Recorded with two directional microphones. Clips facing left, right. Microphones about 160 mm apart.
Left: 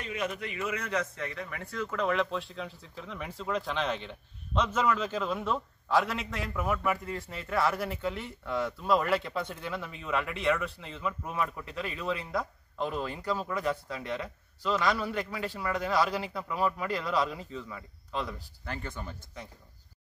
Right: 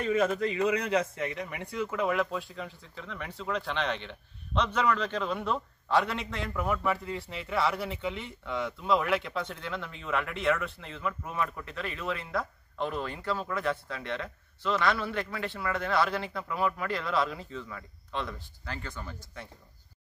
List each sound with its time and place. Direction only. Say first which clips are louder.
0.0 s a man's voice: right 8 dB; 45° right (ahead or behind)
0.8 s a man's voice: right 4 dB; 25° right (ahead or behind); by 19.4 s 20° left (ahead or behind)